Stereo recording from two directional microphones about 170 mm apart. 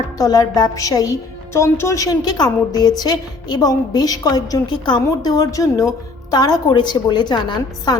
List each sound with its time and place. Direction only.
0.2 s a woman's voice: 20° left (ahead or behind)